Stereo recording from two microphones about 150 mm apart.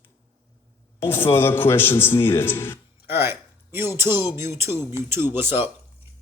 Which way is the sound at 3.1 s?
15° right (ahead or behind).